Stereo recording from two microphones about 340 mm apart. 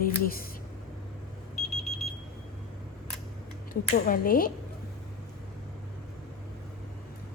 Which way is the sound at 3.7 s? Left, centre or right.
Left.